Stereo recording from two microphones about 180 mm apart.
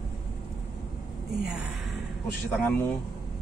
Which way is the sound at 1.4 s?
5° right (ahead or behind).